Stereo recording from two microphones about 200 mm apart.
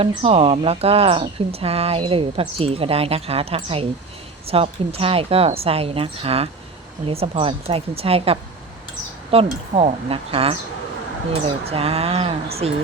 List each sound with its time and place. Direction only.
0.0 s speech: 25° right (ahead or behind)
11.6 s speech: 30° right (ahead or behind)